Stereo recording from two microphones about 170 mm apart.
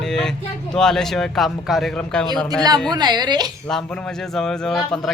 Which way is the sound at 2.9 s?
25° right (ahead or behind).